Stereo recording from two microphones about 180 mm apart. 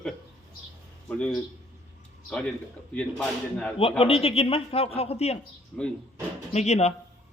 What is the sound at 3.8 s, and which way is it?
Speech, 30° left (ahead or behind).